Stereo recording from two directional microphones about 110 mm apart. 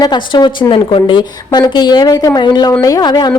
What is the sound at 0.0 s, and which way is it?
A woman's voice, 45° left (ahead or behind).